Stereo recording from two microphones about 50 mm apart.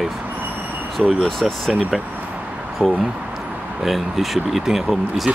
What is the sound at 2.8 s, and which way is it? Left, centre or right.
Speech, right.